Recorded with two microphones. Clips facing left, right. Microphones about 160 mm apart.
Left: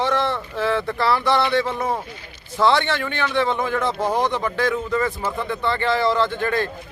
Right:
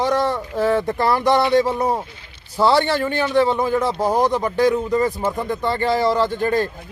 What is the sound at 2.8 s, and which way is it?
Speech, 35° right (ahead or behind).